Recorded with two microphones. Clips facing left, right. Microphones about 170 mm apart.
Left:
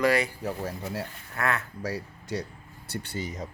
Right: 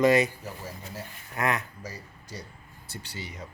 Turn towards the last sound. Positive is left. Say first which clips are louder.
# left 7 dB
turn(degrees=45)  # may be behind; listen again after turning